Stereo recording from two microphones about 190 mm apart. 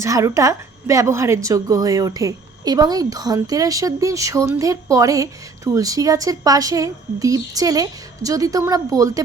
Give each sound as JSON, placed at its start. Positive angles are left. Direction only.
{"t": 0.0, "sound": "a woman's voice", "side_deg": -15}